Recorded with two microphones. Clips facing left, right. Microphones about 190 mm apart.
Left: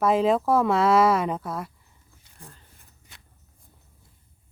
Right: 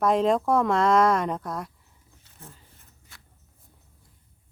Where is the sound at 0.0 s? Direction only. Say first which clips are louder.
Left 1 dB; 5° left (ahead or behind).